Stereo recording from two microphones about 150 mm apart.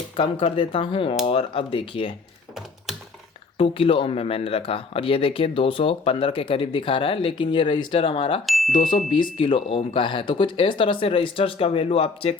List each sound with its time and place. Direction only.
0.2 s speech: 35° left (ahead or behind)
3.6 s speech: 35° left (ahead or behind)
8.4 s a sound: centre (ahead or behind)
8.8 s speech: 65° left (ahead or behind)
9.4 s speech: 35° left (ahead or behind)